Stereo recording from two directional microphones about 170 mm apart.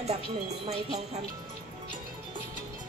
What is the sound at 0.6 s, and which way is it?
Speech, 40° right (ahead or behind).